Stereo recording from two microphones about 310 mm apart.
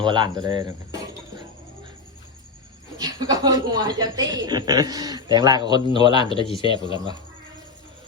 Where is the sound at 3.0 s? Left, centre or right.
Centre.